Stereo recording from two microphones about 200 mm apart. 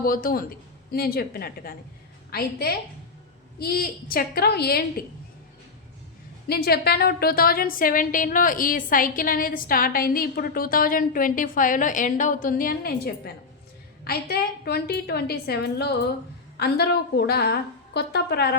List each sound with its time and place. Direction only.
0.0 s a woman's voice: 45° left (ahead or behind)
6.5 s a woman's voice: 50° left (ahead or behind)